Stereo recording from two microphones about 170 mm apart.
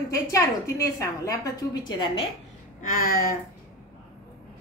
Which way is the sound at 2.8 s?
55° left (ahead or behind).